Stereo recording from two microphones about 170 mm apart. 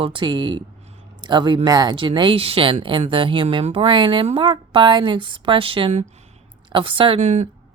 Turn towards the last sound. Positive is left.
turn(degrees=-45)  # may be behind; listen again after turning